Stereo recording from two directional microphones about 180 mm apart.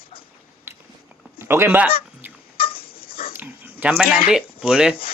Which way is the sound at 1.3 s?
15° right (ahead or behind).